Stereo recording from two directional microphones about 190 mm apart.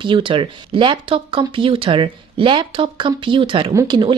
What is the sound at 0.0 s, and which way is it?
Speech, 25° right (ahead or behind).